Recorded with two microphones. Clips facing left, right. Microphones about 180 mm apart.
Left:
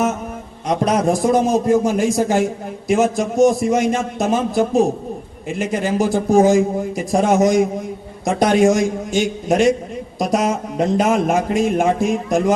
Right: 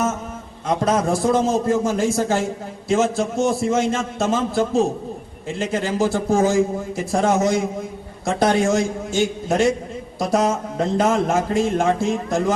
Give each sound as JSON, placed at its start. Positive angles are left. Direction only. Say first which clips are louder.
{"t": 0.7, "sound": "a man's voice", "louder": "left 2 dB", "side_deg": 15}